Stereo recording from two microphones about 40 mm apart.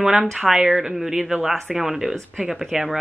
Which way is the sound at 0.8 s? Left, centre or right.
Centre.